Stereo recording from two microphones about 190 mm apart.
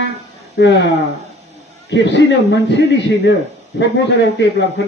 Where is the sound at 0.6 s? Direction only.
65° left (ahead or behind).